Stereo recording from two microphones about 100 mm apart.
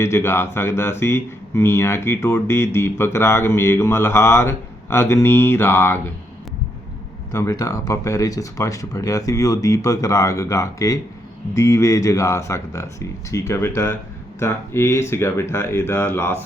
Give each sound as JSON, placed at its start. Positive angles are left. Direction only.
{"t": 0.0, "sound": "speech", "side_deg": 25}
{"t": 7.3, "sound": "speech", "side_deg": 35}